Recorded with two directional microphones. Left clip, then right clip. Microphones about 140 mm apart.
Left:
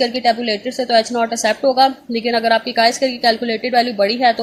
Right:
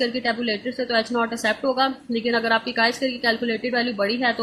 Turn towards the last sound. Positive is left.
turn(degrees=40)  # may be behind; listen again after turning